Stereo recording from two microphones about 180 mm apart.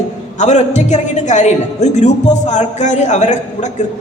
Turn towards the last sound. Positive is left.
turn(degrees=40)  # may be behind; listen again after turning